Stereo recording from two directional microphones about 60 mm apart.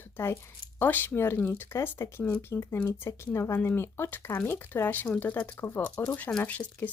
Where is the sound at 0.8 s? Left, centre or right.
Left.